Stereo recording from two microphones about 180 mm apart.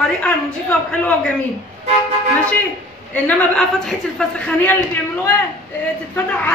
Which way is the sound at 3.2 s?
5° left (ahead or behind).